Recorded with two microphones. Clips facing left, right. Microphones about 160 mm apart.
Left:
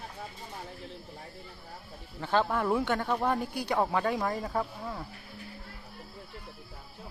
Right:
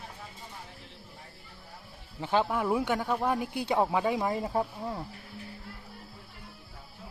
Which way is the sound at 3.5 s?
20° right (ahead or behind).